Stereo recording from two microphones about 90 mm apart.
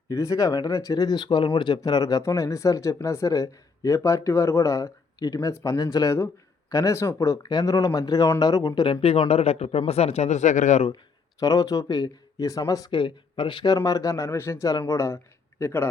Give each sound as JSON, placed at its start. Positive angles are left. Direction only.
{"t": 0.1, "sound": "speech", "side_deg": 40}
{"t": 7.4, "sound": "speech", "side_deg": 45}
{"t": 8.8, "sound": "speech", "side_deg": 85}
{"t": 11.3, "sound": "speech", "side_deg": 45}
{"t": 12.9, "sound": "speech", "side_deg": 60}
{"t": 13.7, "sound": "speech", "side_deg": 40}